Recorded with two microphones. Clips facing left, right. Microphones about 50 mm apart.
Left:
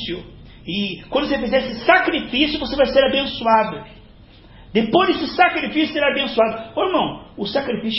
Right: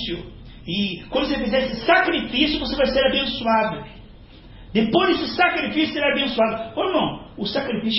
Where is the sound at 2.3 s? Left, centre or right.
Left.